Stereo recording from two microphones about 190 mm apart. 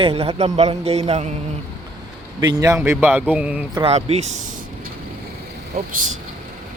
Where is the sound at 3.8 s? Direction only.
35° right (ahead or behind).